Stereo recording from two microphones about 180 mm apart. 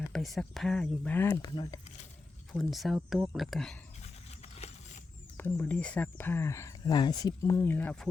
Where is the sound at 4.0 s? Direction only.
40° left (ahead or behind).